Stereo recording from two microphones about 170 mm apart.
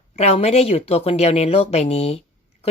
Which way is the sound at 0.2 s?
40° left (ahead or behind).